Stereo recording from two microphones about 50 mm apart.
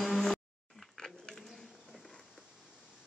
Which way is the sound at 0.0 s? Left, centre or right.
Centre.